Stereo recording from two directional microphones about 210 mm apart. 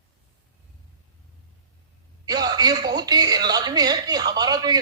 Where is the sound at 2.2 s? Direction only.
20° right (ahead or behind).